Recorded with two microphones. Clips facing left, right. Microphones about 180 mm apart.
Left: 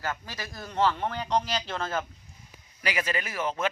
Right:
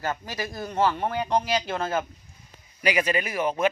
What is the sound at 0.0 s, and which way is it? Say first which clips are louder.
Speech: right 5 dB; 20° right (ahead or behind).